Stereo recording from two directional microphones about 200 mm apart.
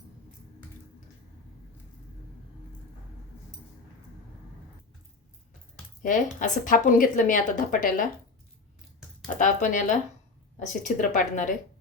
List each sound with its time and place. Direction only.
6.0 s speech: 40° left (ahead or behind)
9.4 s a sound: 40° left (ahead or behind)
10.6 s speech: 35° left (ahead or behind)